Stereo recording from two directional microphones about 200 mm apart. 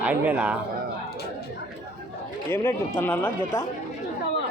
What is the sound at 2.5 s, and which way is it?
Speech, 10° left (ahead or behind).